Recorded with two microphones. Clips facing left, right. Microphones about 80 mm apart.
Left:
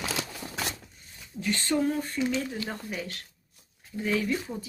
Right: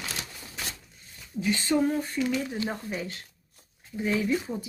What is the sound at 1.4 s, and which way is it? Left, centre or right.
Speech, centre.